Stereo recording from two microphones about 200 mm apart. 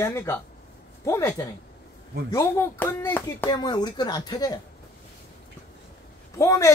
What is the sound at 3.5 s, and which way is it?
Speech, 20° left (ahead or behind).